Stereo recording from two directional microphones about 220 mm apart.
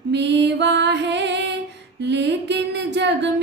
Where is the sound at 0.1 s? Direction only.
50° right (ahead or behind).